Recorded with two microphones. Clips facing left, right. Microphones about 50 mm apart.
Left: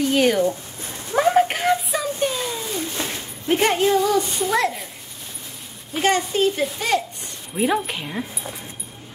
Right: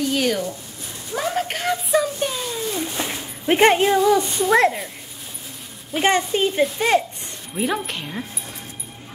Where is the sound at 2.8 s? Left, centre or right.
Centre.